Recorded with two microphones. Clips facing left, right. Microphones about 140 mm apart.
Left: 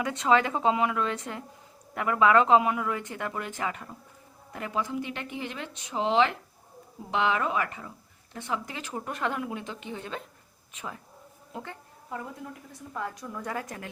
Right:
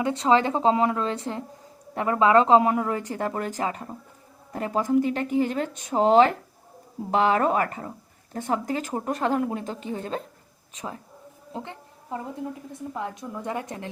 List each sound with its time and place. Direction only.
0.0 s speech: 30° right (ahead or behind)
11.5 s a sound: 25° right (ahead or behind)
12.7 s a woman's voice: 20° right (ahead or behind)